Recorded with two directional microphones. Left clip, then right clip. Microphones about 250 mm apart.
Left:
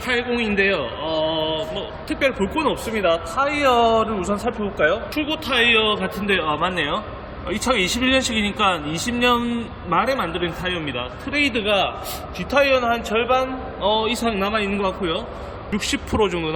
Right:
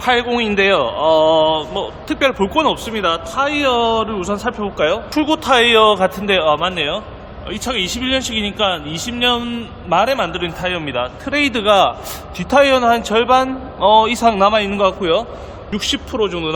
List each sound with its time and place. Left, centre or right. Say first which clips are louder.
0.0 s speech: right 6 dB; centre
5.1 s speech: right 7 dB; centre
7.5 s speech: even; centre